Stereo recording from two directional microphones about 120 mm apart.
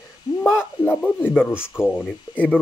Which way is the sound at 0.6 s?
15° left (ahead or behind).